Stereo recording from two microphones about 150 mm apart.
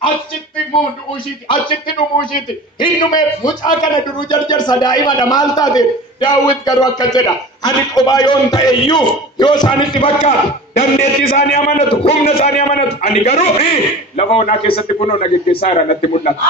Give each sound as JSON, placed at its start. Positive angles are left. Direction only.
{"t": 2.8, "sound": "a man's voice", "side_deg": 30}